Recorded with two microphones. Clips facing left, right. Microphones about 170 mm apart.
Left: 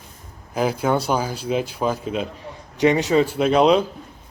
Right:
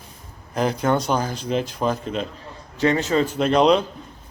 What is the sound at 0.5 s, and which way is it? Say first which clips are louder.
A man's voice: even; 5° left (ahead or behind).